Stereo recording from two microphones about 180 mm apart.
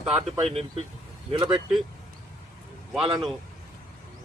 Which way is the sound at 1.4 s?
5° right (ahead or behind).